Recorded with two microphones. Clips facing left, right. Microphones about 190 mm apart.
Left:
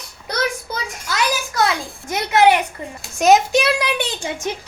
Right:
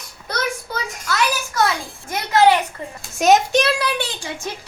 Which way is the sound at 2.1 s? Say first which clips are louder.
Left 1 dB; 20° left (ahead or behind).